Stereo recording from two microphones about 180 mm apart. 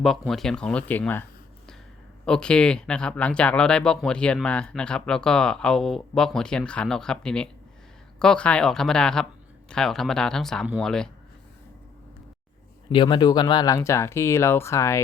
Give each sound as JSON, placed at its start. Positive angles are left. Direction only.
{"t": 0.0, "sound": "speech", "side_deg": 0}
{"t": 2.2, "sound": "speech", "side_deg": 5}
{"t": 12.9, "sound": "speech", "side_deg": 25}